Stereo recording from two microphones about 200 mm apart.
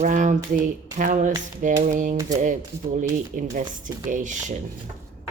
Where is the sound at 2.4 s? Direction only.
40° right (ahead or behind).